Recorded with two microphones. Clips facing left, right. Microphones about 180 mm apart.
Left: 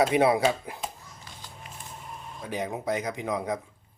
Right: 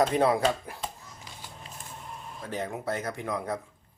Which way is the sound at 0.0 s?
10° left (ahead or behind).